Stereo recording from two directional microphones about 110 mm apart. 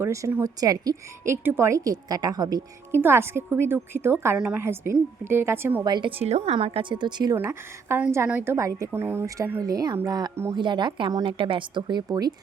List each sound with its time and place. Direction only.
0.0 s a woman's voice: 30° right (ahead or behind)
2.9 s a woman's voice: 20° right (ahead or behind)
5.8 s a woman's voice: 45° right (ahead or behind)
7.3 s a woman's voice: 20° right (ahead or behind)
8.5 s a woman's voice: 30° right (ahead or behind)